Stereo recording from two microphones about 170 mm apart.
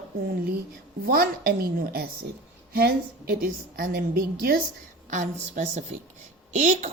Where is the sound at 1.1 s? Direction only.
60° right (ahead or behind).